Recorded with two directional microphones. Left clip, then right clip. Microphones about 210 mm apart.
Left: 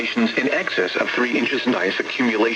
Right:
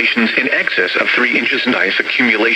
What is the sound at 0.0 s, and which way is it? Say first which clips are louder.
Speech: right 7 dB; 15° right (ahead or behind).